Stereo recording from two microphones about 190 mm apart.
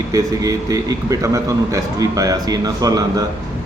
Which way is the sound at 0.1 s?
15° right (ahead or behind).